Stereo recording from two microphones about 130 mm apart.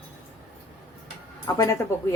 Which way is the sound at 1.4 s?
25° left (ahead or behind).